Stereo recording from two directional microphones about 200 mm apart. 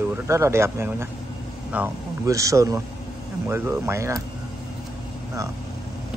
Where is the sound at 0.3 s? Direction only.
15° right (ahead or behind).